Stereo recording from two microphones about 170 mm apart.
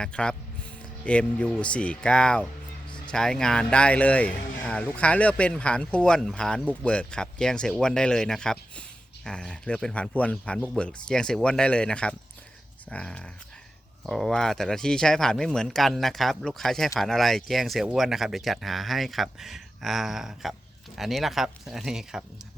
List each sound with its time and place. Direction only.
0.0 s speech: 5° left (ahead or behind)